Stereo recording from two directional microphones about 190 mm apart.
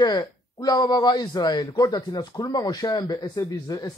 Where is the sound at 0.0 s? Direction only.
20° left (ahead or behind).